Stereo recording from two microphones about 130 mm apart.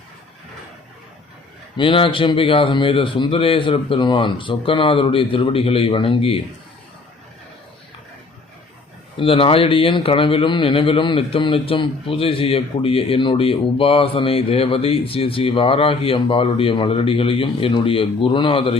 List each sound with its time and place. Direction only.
1.7 s a man's voice: 40° left (ahead or behind)
9.1 s a man's voice: 45° left (ahead or behind)